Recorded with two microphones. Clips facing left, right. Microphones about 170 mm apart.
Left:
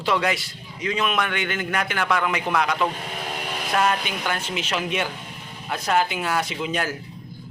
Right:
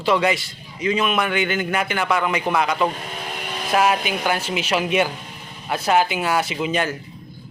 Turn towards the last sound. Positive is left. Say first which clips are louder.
# right 4 dB
turn(degrees=0)  # may be behind; listen again after turning